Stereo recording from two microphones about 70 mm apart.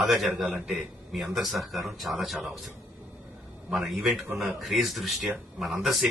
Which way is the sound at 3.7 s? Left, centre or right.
Centre.